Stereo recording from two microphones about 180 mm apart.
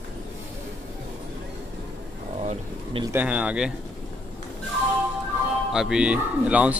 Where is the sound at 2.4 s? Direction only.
35° right (ahead or behind).